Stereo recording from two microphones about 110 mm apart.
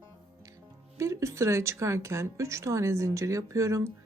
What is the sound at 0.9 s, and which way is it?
Speech, 25° right (ahead or behind).